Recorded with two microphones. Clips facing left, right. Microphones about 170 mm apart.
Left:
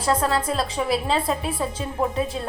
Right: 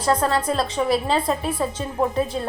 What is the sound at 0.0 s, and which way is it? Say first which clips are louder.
A woman's voice: right 2 dB; 5° left (ahead or behind).